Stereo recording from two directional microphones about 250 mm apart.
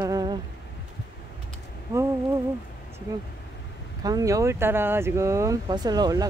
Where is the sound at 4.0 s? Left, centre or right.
Centre.